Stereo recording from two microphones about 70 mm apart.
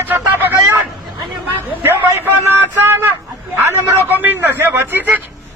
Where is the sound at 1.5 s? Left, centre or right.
Right.